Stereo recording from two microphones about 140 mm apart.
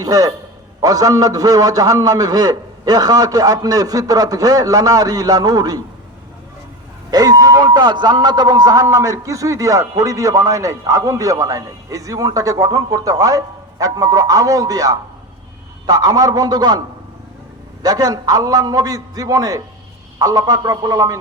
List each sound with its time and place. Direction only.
0.0 s a man's voice: 25° right (ahead or behind)
7.1 s a man's voice: 25° right (ahead or behind)
17.8 s a man's voice: 25° right (ahead or behind)